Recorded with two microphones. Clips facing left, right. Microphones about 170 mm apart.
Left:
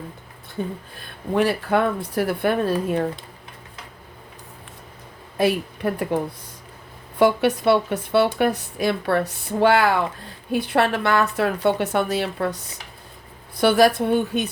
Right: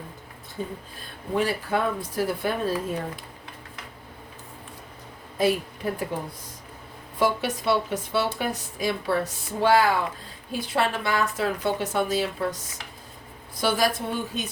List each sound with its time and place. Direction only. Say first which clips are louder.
0.6 s a woman's voice: left 5 dB; 60° left (ahead or behind)
5.4 s speech: left 3 dB; 60° left (ahead or behind)
7.2 s a woman's voice: left 7 dB; 60° left (ahead or behind)
13.6 s a woman's voice: left 8 dB; 60° left (ahead or behind)